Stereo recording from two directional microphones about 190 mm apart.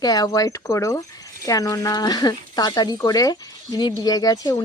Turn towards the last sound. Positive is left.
turn(degrees=20)  # may be behind; listen again after turning